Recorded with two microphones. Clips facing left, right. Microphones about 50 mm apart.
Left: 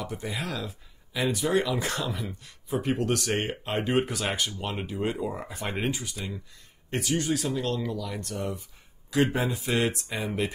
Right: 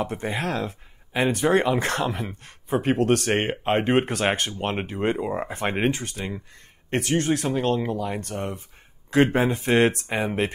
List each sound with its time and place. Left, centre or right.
0.0 s speech: right